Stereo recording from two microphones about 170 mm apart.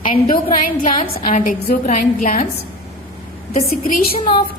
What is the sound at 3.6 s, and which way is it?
Speech, 55° left (ahead or behind).